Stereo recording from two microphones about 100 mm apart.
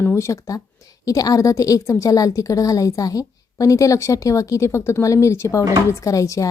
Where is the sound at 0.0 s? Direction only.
25° left (ahead or behind).